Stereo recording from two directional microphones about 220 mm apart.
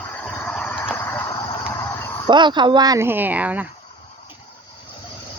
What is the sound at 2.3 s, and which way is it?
Speech, 20° right (ahead or behind).